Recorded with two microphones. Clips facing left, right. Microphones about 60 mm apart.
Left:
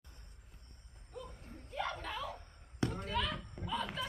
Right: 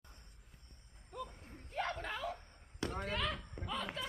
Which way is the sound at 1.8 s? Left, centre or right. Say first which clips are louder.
Even; right.